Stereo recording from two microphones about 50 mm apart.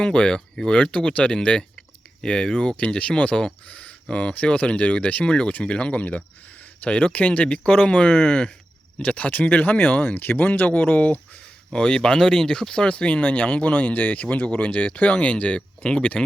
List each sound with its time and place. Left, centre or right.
0.0 s speech: centre
0.8 s speech: left
3.7 s a sound: left
4.1 s speech: left
5.5 s speech: left
11.7 s speech: centre